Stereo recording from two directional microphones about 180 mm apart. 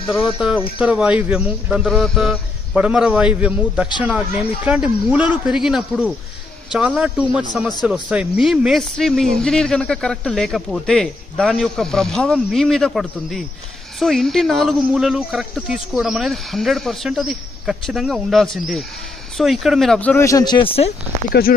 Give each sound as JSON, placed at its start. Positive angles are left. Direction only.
{"t": 0.1, "sound": "speech", "side_deg": 0}
{"t": 21.3, "sound": "speech", "side_deg": 55}